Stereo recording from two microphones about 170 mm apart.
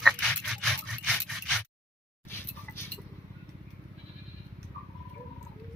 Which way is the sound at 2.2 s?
15° left (ahead or behind).